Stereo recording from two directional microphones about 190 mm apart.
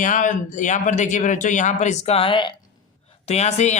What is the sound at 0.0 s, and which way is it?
A man's voice, 40° left (ahead or behind).